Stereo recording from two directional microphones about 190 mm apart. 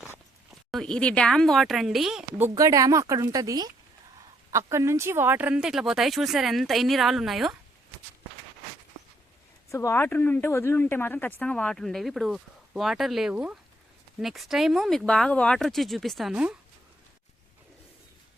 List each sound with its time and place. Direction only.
0.0 s speech: centre (ahead or behind)
2.6 s speech: 20° right (ahead or behind); by 7.5 s centre (ahead or behind)
9.6 s speech: 15° left (ahead or behind); by 16.6 s 5° right (ahead or behind)